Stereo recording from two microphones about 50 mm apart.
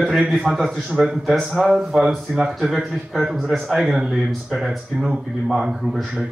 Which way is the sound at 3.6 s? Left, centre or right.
Centre.